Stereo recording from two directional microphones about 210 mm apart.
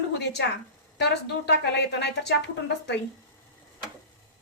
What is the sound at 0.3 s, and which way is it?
Speech, 55° left (ahead or behind).